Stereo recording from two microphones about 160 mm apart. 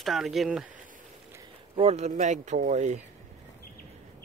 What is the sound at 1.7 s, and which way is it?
Speech, 40° right (ahead or behind).